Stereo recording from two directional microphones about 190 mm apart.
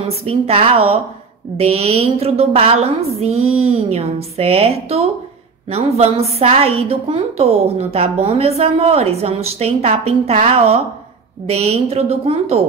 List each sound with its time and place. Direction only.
0.2 s a woman's voice: 30° right (ahead or behind)
3.3 s speech: 90° right
3.6 s a woman's voice: 30° right (ahead or behind)